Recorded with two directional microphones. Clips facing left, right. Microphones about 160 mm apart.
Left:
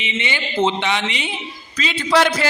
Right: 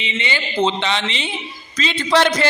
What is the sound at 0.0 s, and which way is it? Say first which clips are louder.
A man's voice: even; 15° left (ahead or behind).